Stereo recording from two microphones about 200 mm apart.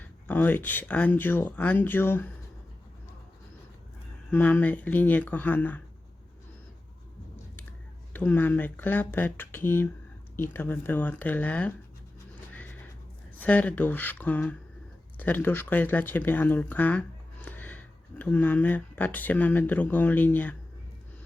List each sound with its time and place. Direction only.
0.0 s speech: 10° left (ahead or behind)
4.3 s speech: 10° left (ahead or behind)
8.1 s speech: 10° left (ahead or behind)
13.4 s speech: 5° left (ahead or behind)